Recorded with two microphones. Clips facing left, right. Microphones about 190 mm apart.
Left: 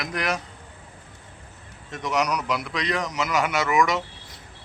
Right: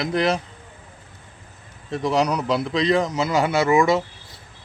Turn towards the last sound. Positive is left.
turn(degrees=-30)  # may be behind; listen again after turning